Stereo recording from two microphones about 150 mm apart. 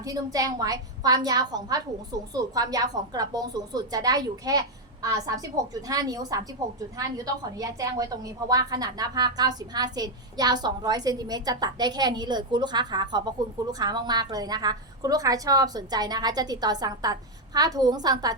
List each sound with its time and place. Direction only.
0.0 s a woman's voice: 25° right (ahead or behind)